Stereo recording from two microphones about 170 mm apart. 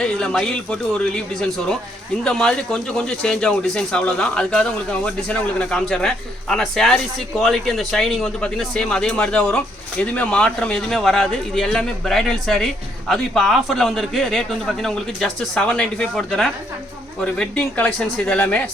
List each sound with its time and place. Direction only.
0.0 s speech: 5° left (ahead or behind)